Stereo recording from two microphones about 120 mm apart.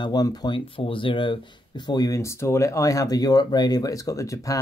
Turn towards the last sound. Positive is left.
turn(degrees=25)  # may be behind; listen again after turning